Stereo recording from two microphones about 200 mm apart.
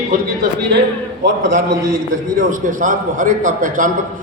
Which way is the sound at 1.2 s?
45° right (ahead or behind).